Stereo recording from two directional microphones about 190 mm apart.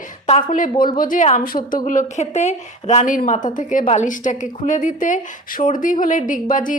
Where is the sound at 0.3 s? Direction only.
40° left (ahead or behind).